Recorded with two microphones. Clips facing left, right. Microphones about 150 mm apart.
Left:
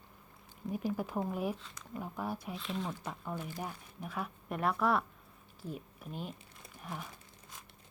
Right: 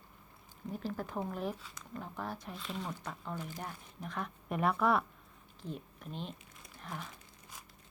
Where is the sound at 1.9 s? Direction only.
10° left (ahead or behind).